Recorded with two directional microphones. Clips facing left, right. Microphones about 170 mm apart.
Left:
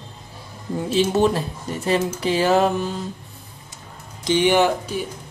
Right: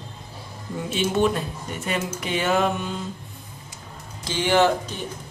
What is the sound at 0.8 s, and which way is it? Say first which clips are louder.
Music: left 4 dB; 35° left (ahead or behind).